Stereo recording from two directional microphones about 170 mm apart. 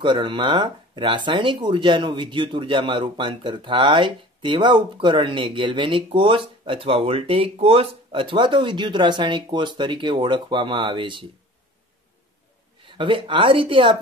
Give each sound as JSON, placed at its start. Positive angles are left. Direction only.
{"t": 0.0, "sound": "speech", "side_deg": -30}
{"t": 12.8, "sound": "speech", "side_deg": -30}